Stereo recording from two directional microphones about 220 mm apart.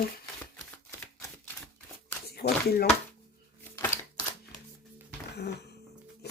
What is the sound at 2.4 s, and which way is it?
Speech, 45° left (ahead or behind).